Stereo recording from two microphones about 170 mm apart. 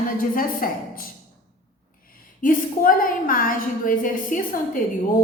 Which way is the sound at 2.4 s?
55° left (ahead or behind).